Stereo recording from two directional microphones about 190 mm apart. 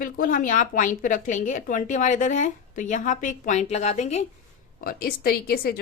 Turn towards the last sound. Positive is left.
turn(degrees=55)  # may be behind; listen again after turning